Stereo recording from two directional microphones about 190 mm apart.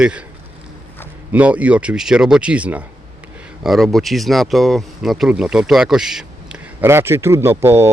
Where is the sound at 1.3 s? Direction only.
5° right (ahead or behind).